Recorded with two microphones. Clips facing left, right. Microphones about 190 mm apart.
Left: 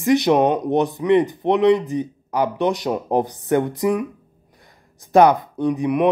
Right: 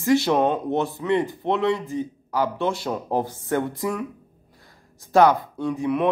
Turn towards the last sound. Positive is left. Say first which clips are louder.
# left 4 dB
turn(degrees=15)  # may be behind; listen again after turning